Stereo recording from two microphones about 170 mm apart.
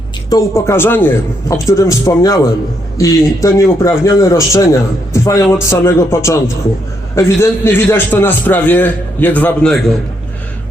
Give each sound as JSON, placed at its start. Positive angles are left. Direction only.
{"t": 0.3, "sound": "a man's voice", "side_deg": 20}